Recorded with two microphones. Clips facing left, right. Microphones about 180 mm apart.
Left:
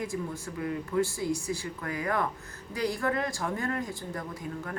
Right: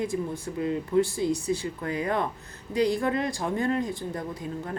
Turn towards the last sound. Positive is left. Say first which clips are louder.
# right 3 dB
turn(degrees=-25)  # may be behind; listen again after turning